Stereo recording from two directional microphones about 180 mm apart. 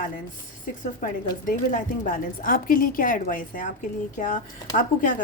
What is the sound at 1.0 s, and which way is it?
A woman's voice, 45° left (ahead or behind).